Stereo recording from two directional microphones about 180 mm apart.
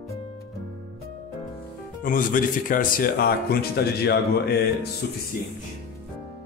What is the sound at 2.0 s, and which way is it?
Speech, 50° left (ahead or behind).